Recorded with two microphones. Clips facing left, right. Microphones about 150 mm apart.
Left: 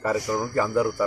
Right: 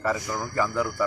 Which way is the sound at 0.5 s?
20° left (ahead or behind).